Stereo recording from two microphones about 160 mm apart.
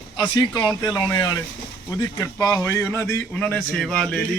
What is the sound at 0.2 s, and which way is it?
A man's voice, 25° left (ahead or behind).